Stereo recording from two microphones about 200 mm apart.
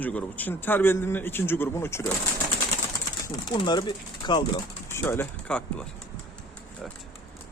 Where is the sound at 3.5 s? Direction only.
20° left (ahead or behind).